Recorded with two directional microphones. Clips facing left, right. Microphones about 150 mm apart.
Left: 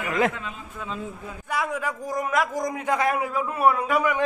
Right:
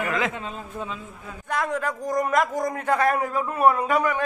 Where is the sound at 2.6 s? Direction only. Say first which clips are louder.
Right 2 dB; 15° left (ahead or behind).